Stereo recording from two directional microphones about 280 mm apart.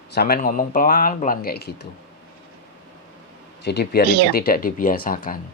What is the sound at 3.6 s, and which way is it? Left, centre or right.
Speech, left.